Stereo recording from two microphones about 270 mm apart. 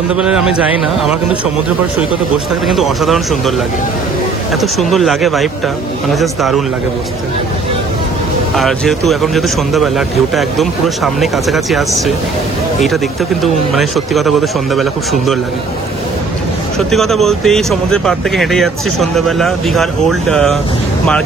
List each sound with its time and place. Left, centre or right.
0.1 s speech: centre
2.0 s speech: centre
4.6 s speech: centre
8.5 s speech: centre
12.8 s speech: centre
16.7 s speech: centre